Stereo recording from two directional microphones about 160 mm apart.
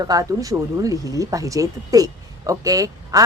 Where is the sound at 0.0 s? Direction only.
20° right (ahead or behind).